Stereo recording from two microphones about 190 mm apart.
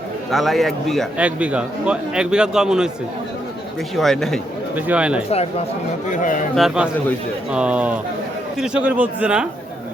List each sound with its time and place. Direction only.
0.3 s a man's voice: centre (ahead or behind)
3.9 s a man's voice: centre (ahead or behind)
6.1 s speech: 45° left (ahead or behind)
6.6 s a man's voice: 5° right (ahead or behind)